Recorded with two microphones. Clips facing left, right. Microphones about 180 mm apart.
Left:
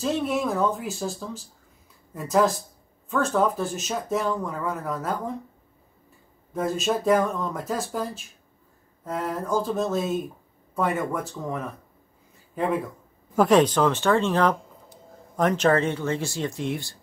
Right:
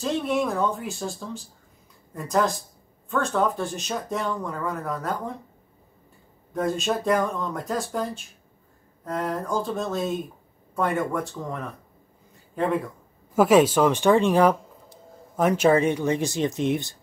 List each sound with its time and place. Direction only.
0.0 s speech: centre (ahead or behind)
6.5 s speech: centre (ahead or behind); by 16.9 s 20° right (ahead or behind)